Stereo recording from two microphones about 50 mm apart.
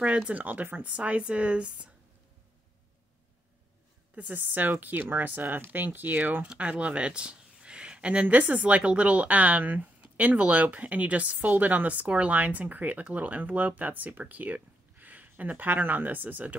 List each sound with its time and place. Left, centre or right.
0.0 s a woman's voice: right
4.1 s speech: right
6.4 s speech: right